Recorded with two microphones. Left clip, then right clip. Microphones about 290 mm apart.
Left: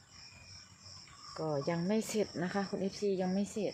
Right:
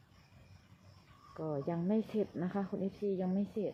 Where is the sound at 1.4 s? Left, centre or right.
Centre.